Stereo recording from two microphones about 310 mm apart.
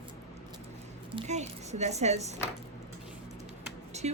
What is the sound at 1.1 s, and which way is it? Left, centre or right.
Speech, right.